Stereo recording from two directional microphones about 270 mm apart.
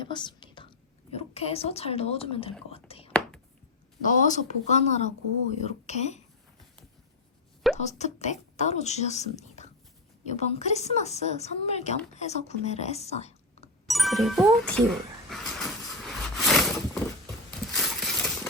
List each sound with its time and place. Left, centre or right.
0.0 s whispering: centre
1.1 s a woman's voice: left
2.6 s whispering: left
4.0 s a woman's voice: left
7.8 s a woman's voice: left
13.8 s a sound: centre